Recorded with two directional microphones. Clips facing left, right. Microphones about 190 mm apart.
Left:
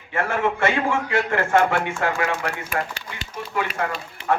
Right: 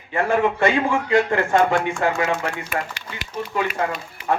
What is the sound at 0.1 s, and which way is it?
Speech, 15° right (ahead or behind).